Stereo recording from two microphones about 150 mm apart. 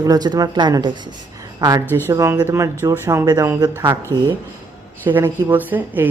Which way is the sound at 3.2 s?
25° right (ahead or behind).